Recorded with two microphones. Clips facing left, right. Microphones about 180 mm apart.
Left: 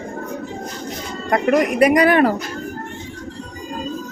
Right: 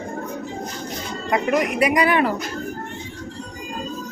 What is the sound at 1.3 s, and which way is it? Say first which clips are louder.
Speech: left 4 dB; 50° left (ahead or behind).